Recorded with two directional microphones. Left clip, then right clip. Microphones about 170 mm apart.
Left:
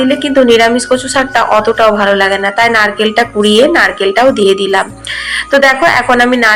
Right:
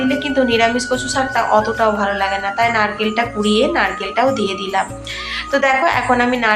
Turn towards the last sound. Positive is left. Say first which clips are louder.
# left 7 dB
turn(degrees=30)  # may be behind; listen again after turning